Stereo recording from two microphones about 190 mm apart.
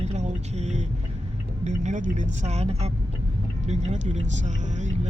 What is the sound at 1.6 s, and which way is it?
Speech, 40° right (ahead or behind).